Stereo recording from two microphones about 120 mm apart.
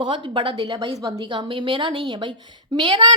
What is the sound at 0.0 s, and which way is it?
A child's voice, 40° right (ahead or behind).